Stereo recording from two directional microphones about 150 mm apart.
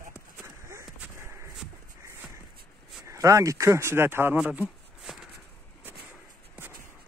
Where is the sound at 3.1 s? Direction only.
20° right (ahead or behind).